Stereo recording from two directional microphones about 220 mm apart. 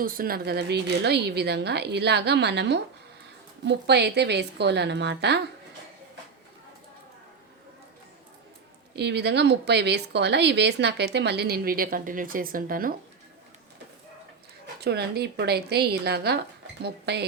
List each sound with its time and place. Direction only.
0.0 s speech: 40° right (ahead or behind)
9.0 s speech: 50° right (ahead or behind)
14.8 s speech: 50° right (ahead or behind)